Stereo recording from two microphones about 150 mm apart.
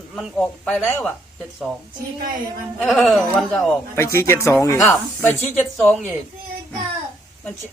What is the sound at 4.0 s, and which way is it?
Speech, 15° left (ahead or behind).